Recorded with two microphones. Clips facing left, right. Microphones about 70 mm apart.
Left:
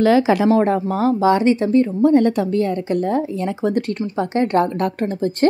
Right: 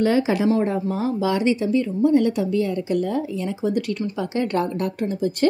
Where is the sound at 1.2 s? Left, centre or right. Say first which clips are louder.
Left 4 dB; left.